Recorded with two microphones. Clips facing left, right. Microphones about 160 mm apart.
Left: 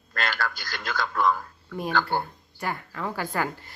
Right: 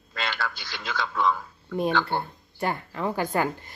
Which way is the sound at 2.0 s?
25° right (ahead or behind).